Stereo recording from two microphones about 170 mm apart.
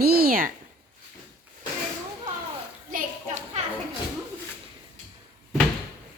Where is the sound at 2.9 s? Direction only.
45° right (ahead or behind).